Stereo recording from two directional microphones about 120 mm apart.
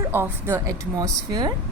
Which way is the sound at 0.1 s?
20° right (ahead or behind).